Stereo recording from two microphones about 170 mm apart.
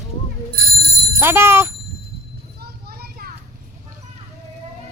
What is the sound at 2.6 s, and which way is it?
Children playing, 65° right (ahead or behind).